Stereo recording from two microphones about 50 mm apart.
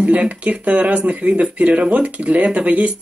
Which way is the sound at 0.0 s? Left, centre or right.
Right.